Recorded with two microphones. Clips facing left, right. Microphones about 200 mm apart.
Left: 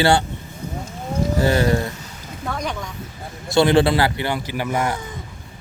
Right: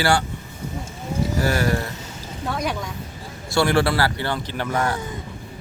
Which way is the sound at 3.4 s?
20° left (ahead or behind).